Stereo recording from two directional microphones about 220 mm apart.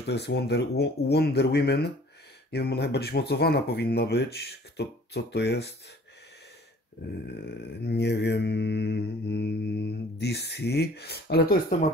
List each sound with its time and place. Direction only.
0.0 s mantra: 50° left (ahead or behind)
7.4 s mantra: 50° left (ahead or behind)